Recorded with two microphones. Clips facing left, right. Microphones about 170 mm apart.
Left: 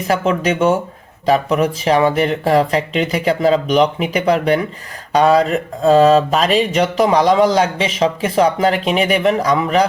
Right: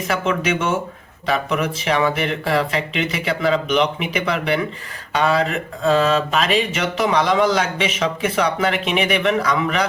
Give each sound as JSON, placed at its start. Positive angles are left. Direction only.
{"t": 0.1, "sound": "mantra", "side_deg": 35}